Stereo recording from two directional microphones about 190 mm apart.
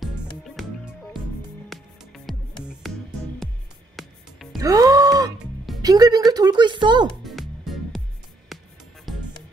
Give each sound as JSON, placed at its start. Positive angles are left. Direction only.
{"t": 0.4, "sound": "music", "side_deg": 0}
{"t": 3.4, "sound": "music", "side_deg": 0}
{"t": 4.6, "sound": "music", "side_deg": -20}
{"t": 5.8, "sound": "speech", "side_deg": -20}
{"t": 7.2, "sound": "music", "side_deg": 0}